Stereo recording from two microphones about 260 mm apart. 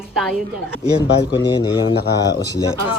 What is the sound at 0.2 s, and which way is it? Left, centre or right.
Speech, centre.